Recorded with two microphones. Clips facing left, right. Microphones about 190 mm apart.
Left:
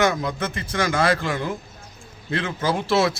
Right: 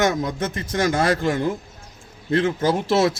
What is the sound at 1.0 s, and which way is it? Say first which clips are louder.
A man's voice: right 2 dB; 40° right (ahead or behind).